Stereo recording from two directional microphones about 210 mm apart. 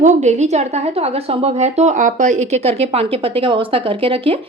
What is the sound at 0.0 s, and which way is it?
A woman's voice, 35° right (ahead or behind).